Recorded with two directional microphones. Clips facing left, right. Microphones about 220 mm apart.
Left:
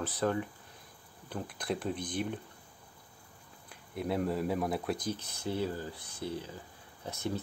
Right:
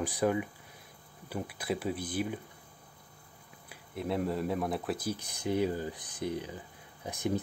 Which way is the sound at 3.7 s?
Centre (ahead or behind).